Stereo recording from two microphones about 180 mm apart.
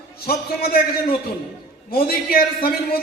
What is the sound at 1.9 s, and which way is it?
Speech, 55° left (ahead or behind).